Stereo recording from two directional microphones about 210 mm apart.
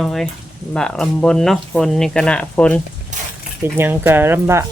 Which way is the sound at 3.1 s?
35° right (ahead or behind).